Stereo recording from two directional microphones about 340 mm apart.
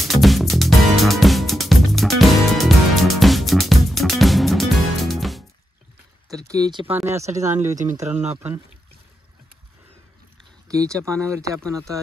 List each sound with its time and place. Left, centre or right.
0.0 s music: centre
6.2 s speech: centre
7.2 s speech: centre
10.7 s speech: centre